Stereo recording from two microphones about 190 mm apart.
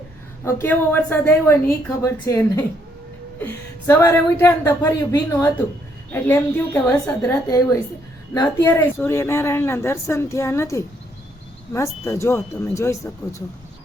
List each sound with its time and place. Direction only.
0.4 s speech: 10° left (ahead or behind)
12.0 s speech: 15° left (ahead or behind)